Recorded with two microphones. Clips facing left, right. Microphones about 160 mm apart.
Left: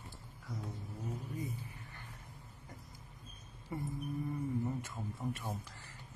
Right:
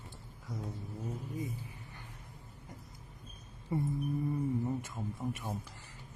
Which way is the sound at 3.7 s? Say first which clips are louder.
Right 7 dB; 25° right (ahead or behind).